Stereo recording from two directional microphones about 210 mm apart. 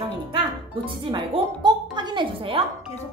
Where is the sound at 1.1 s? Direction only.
20° right (ahead or behind).